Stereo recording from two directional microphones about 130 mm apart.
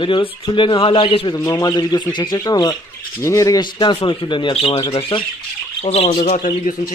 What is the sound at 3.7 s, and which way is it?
Speech, 40° left (ahead or behind).